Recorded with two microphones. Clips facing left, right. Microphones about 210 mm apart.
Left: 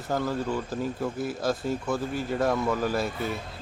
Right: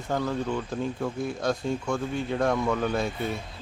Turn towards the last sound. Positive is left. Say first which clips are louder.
# even
turn(degrees=0)  # may be behind; listen again after turning